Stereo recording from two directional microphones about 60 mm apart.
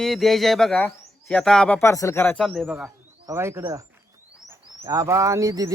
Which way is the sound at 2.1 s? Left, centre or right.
Left.